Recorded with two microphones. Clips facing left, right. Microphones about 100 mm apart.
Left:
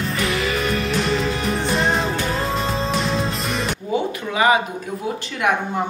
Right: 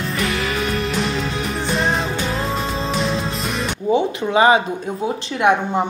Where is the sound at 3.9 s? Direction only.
30° right (ahead or behind).